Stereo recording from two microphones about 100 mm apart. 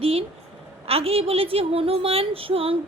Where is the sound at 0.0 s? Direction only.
80° right.